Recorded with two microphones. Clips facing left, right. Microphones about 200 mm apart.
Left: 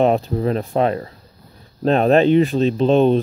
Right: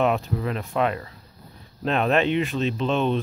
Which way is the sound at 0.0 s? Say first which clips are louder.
Left 6 dB; 35° left (ahead or behind).